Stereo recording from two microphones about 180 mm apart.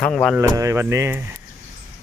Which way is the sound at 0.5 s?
15° right (ahead or behind).